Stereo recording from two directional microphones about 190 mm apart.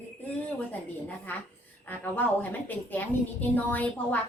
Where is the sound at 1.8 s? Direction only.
10° left (ahead or behind).